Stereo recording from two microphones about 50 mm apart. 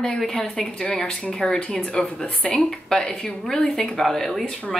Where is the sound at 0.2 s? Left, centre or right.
Centre.